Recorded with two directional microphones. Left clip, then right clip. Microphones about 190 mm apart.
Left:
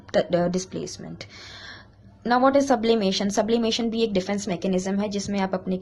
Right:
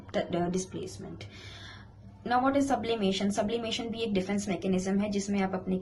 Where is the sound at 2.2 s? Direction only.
45° left (ahead or behind).